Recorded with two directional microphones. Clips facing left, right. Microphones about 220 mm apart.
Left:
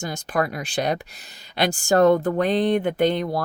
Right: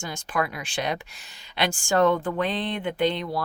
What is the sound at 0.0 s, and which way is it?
Speech, 40° left (ahead or behind).